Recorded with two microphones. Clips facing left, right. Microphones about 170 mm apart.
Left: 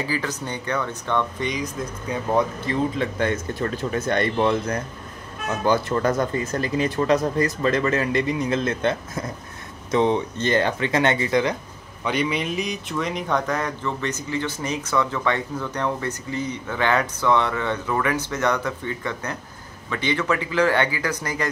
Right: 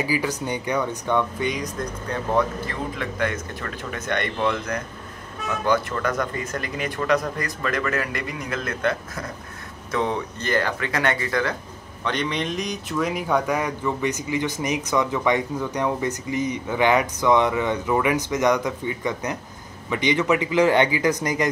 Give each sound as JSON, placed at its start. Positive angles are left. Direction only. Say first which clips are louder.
{"t": 0.0, "sound": "speech", "louder": "right 2 dB", "side_deg": -10}
{"t": 3.0, "sound": "speech", "louder": "left 3 dB", "side_deg": 30}
{"t": 12.0, "sound": "speech", "louder": "left 2 dB", "side_deg": 10}